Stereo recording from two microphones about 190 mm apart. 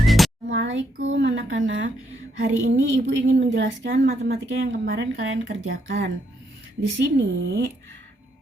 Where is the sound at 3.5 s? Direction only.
70° right (ahead or behind).